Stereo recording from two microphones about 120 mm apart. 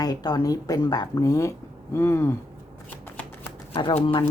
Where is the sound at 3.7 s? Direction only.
50° left (ahead or behind).